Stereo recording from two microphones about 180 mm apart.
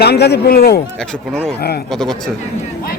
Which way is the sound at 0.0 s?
65° left (ahead or behind).